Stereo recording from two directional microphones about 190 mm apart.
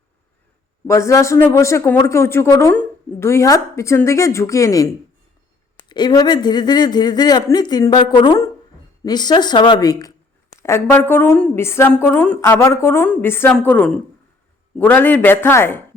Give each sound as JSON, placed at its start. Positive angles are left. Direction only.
{"t": 0.9, "sound": "speech", "side_deg": 15}
{"t": 5.9, "sound": "speech", "side_deg": 20}